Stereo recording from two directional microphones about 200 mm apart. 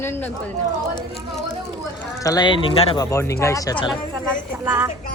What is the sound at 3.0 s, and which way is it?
Speech, 15° left (ahead or behind).